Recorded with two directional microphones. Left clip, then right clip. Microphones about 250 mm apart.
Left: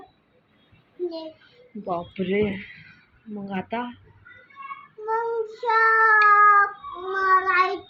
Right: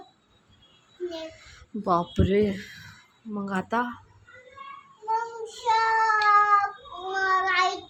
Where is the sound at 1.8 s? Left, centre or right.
Right.